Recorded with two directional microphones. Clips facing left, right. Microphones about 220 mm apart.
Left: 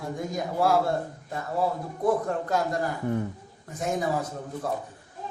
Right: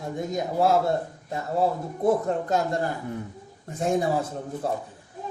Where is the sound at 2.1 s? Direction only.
25° right (ahead or behind).